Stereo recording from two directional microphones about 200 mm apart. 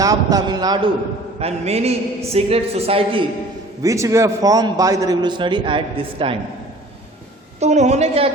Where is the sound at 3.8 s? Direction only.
15° right (ahead or behind).